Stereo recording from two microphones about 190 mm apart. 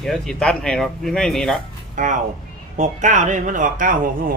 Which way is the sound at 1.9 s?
40° right (ahead or behind).